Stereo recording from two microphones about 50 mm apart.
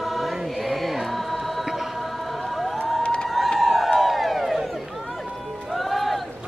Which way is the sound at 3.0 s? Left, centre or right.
Centre.